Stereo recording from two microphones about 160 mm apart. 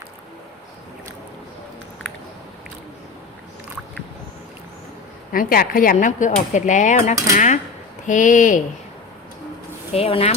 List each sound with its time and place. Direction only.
5.3 s speech: 65° left (ahead or behind)
9.9 s speech: 35° left (ahead or behind)